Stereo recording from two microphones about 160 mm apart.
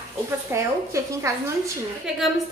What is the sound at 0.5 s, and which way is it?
Speech, 20° right (ahead or behind).